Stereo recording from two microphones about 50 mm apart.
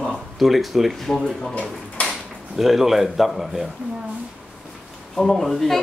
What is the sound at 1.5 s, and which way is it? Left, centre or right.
Speech, left.